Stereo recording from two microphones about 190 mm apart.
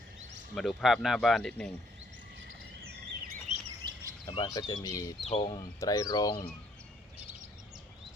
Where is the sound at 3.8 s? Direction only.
25° right (ahead or behind).